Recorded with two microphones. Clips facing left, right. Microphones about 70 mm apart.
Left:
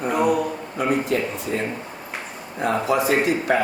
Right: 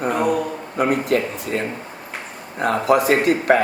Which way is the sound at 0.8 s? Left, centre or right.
Right.